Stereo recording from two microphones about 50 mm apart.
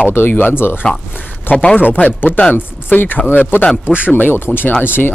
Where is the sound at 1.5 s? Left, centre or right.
Centre.